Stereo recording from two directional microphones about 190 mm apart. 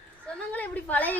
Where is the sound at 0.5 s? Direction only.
10° left (ahead or behind).